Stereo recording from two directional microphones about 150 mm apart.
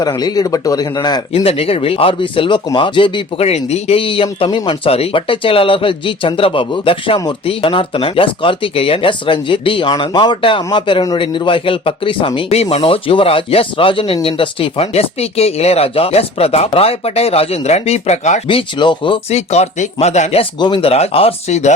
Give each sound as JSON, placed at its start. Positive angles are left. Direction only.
{"t": 0.0, "sound": "speech", "side_deg": 25}
{"t": 1.3, "sound": "speech", "side_deg": 40}
{"t": 18.4, "sound": "speech", "side_deg": 35}
{"t": 19.3, "sound": "speech", "side_deg": 45}